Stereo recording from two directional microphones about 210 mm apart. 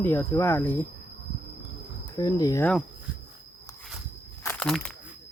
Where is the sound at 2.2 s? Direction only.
15° left (ahead or behind).